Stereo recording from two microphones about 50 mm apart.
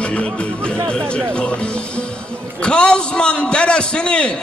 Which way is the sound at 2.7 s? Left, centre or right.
Left.